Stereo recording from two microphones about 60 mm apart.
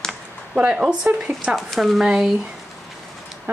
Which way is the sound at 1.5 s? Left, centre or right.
Centre.